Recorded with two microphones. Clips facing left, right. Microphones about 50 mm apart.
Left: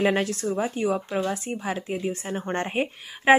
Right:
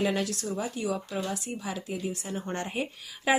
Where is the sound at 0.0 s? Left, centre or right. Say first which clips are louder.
Left 5 dB; left.